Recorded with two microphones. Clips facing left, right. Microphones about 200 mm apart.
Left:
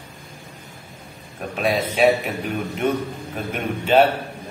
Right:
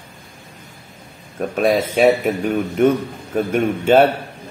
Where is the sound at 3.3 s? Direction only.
45° right (ahead or behind).